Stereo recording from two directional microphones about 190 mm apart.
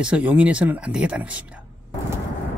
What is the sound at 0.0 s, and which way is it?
Speech, 5° right (ahead or behind).